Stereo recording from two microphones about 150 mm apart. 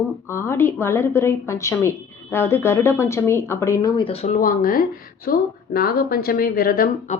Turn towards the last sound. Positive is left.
turn(degrees=55)  # may be behind; listen again after turning